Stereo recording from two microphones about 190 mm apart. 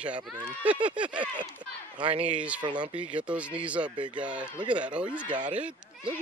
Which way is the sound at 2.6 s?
25° right (ahead or behind).